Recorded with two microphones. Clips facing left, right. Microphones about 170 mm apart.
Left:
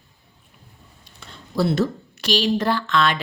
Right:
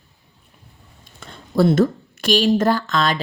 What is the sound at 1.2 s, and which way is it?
Speech, 50° right (ahead or behind).